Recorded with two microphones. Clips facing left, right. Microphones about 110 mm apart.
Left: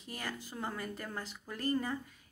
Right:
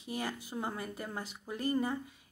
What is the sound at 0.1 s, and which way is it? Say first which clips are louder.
Speech: right 5 dB; 15° right (ahead or behind).